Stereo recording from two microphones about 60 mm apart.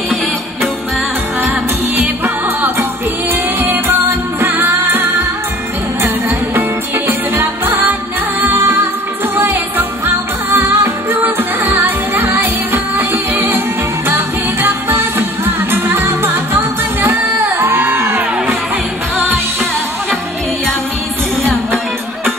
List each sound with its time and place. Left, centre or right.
2.2 s music: right
7.1 s music: right